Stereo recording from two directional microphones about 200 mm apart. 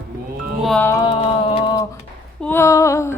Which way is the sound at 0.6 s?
5° left (ahead or behind).